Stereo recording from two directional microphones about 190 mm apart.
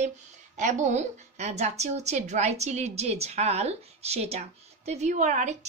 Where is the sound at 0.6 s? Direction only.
40° right (ahead or behind).